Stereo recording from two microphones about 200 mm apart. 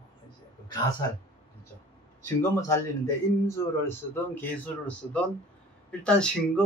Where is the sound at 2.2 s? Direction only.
15° left (ahead or behind).